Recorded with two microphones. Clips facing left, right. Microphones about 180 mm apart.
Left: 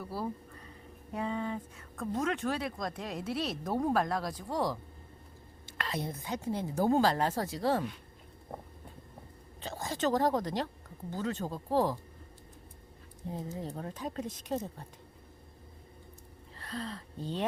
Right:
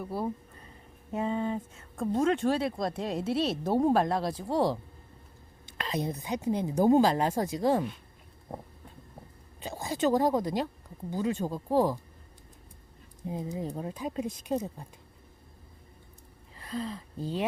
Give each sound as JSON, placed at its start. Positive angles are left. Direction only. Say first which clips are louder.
{"t": 0.0, "sound": "speech", "louder": "right 4 dB", "side_deg": -20}
{"t": 5.6, "sound": "a woman's voice", "louder": "right 4 dB", "side_deg": -20}
{"t": 9.6, "sound": "a woman's voice", "louder": "right 4 dB", "side_deg": -10}
{"t": 13.2, "sound": "a woman's voice", "louder": "right 4 dB", "side_deg": -15}
{"t": 16.6, "sound": "speech", "louder": "right 4 dB", "side_deg": -10}